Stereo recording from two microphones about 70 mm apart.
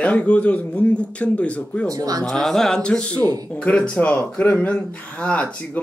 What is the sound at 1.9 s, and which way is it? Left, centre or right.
Speech, right.